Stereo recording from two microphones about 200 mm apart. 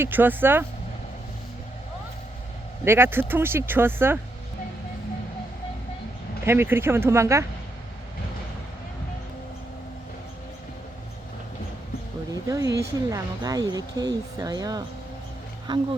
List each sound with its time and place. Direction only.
0.0 s speech: 10° right (ahead or behind)
2.8 s speech: 10° right (ahead or behind)
6.4 s speech: 10° right (ahead or behind)
12.3 s speech: 20° right (ahead or behind)